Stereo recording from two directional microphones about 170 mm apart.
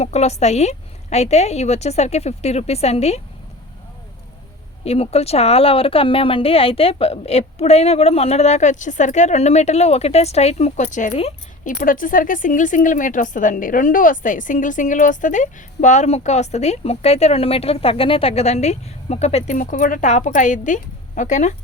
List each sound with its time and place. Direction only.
0.0 s a woman's voice: 40° left (ahead or behind)
4.9 s a woman's voice: 35° left (ahead or behind)
11.6 s speech: 55° left (ahead or behind)